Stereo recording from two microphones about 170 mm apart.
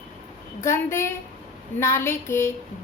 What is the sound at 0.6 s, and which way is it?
A woman's voice, 15° left (ahead or behind).